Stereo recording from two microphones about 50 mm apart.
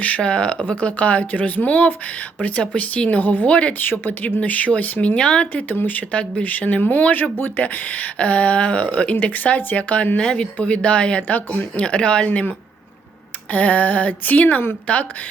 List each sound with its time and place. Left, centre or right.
0.2 s speech: left
3.2 s speech: left
3.5 s speech: left
3.8 s speech: left
5.6 s speech: left
6.1 s speech: left
10.2 s speech: centre